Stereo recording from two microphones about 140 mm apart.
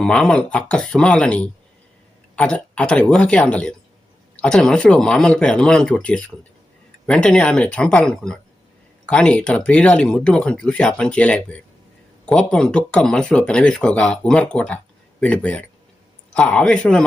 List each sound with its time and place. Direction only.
0.0 s speech: 5° left (ahead or behind)